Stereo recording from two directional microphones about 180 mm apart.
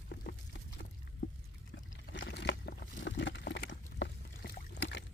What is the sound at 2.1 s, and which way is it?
Boat, 80° left.